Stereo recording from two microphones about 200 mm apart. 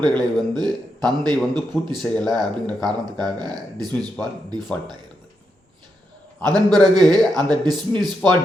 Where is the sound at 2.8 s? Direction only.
20° right (ahead or behind).